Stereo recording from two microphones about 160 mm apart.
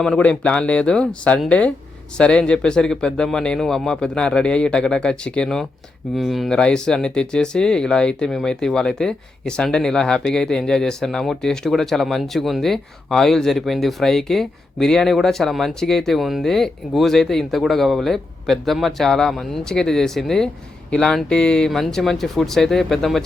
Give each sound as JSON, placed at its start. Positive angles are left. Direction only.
{"t": 0.0, "sound": "speech", "side_deg": 5}